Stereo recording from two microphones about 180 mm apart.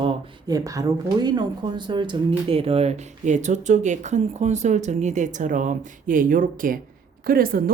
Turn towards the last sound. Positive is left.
turn(degrees=-55)  # may be behind; listen again after turning